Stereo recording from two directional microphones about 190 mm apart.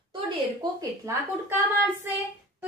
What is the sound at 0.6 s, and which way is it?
Speech, 15° right (ahead or behind).